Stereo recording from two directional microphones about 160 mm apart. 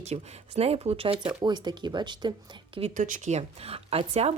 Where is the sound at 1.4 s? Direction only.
25° right (ahead or behind).